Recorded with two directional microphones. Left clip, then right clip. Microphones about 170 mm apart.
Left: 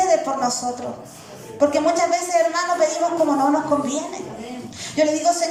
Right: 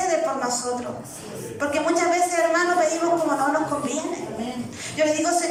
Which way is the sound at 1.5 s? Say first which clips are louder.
Left 5 dB; 25° left (ahead or behind).